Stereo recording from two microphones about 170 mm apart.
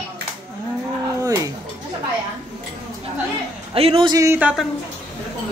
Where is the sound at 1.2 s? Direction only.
20° right (ahead or behind).